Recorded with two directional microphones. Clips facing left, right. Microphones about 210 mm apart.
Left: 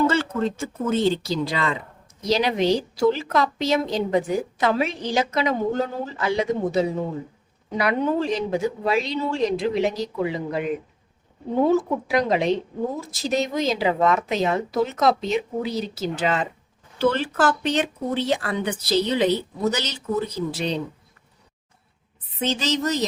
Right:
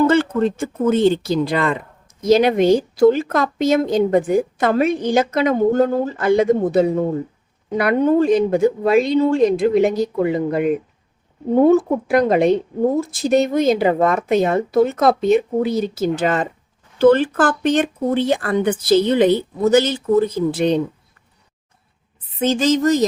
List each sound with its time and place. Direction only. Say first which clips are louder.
0.1 s a woman's voice: right 7 dB; 55° right (ahead or behind)
12.0 s a woman's voice: right 6 dB; 55° right (ahead or behind)
22.4 s a woman's voice: right 8 dB; 45° right (ahead or behind)